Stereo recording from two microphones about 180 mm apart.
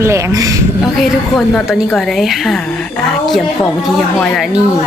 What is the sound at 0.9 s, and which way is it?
A woman's voice, centre (ahead or behind).